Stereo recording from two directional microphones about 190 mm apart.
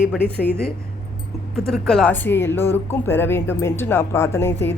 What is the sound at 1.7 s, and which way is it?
Speech, 5° left (ahead or behind).